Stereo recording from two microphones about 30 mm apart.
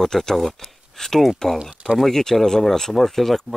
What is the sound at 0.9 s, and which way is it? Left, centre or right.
Speech, centre.